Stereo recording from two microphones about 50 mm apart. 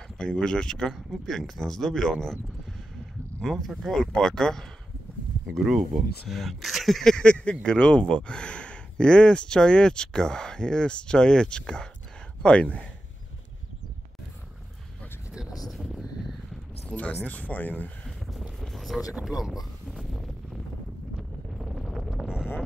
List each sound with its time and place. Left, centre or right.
0.2 s speech: centre
3.4 s speech: centre
5.5 s speech: centre
7.2 s speech: left
15.6 s a sound: centre
16.8 s a sound: left
17.1 s speech: left
18.0 s boat: centre
18.6 s a sound: centre
21.2 s wind noise: centre
22.2 s boat: centre